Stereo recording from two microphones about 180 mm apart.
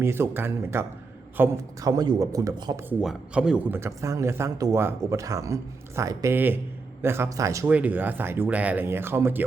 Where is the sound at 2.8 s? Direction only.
5° right (ahead or behind).